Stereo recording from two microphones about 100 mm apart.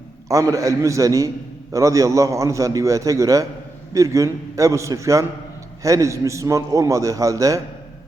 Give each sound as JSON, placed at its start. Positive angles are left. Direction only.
{"t": 0.3, "sound": "a man's voice", "side_deg": -35}